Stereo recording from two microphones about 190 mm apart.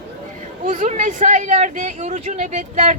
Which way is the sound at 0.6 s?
40° right (ahead or behind).